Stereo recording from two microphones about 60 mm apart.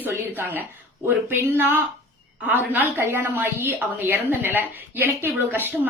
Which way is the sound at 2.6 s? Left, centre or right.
Right.